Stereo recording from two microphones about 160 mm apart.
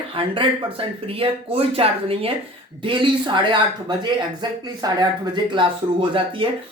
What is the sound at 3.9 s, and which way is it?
Speech, 30° right (ahead or behind).